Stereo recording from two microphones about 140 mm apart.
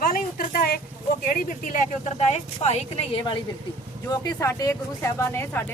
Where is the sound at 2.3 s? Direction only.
50° left (ahead or behind).